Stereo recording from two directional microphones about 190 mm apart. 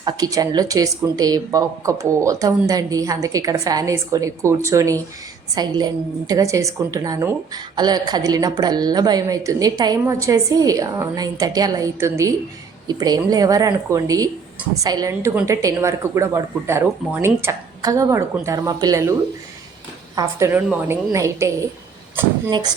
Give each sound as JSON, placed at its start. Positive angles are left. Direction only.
{"t": 0.0, "sound": "a woman's voice", "side_deg": -20}
{"t": 20.1, "sound": "a woman's voice", "side_deg": -15}